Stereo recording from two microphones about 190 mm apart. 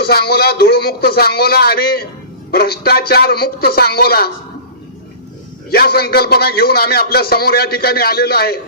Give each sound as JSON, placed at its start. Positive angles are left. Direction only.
{"t": 0.0, "sound": "a man's voice", "side_deg": 55}
{"t": 5.7, "sound": "a man's voice", "side_deg": 55}